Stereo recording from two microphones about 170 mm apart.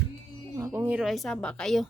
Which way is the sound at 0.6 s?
15° right (ahead or behind).